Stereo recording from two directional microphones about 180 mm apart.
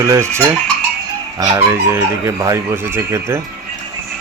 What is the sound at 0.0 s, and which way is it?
Speech, 15° right (ahead or behind).